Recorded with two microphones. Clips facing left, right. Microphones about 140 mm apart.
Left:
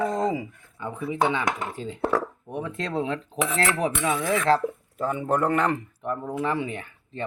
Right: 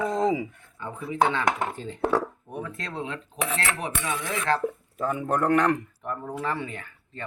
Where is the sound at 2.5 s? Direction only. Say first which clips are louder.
Left 7 dB; 25° left (ahead or behind).